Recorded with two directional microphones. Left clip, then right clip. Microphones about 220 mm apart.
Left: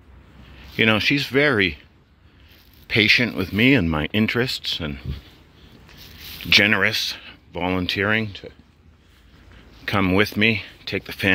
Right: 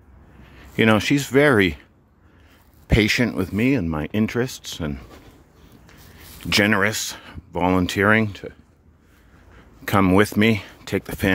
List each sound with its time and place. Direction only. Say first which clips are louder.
0.7 s speech: even; 20° right (ahead or behind)
3.0 s speech: left 3 dB; 20° right (ahead or behind)
3.4 s speech: left 4 dB; 5° right (ahead or behind)
6.4 s speech: left 2 dB; 20° right (ahead or behind)
9.8 s speech: right 2 dB; 20° right (ahead or behind)